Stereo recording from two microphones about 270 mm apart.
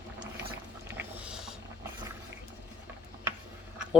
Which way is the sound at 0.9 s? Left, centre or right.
Centre.